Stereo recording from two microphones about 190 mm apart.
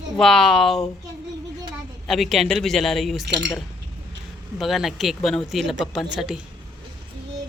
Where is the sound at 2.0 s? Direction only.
Centre (ahead or behind).